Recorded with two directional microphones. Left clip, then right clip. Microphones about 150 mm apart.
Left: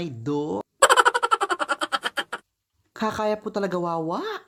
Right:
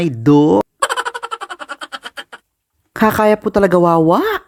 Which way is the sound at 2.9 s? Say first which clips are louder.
Right 13 dB; 35° right (ahead or behind).